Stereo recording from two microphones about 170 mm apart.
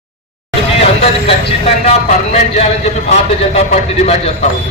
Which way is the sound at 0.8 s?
35° left (ahead or behind).